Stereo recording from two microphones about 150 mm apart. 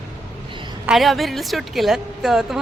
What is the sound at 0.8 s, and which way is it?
Speech, centre (ahead or behind).